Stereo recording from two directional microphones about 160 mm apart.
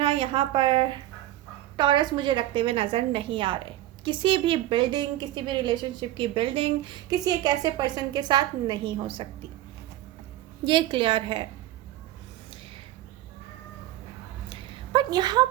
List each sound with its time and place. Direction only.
0.0 s a woman's voice: 35° right (ahead or behind)
10.7 s a woman's voice: 30° right (ahead or behind)
14.9 s a woman's voice: 25° right (ahead or behind)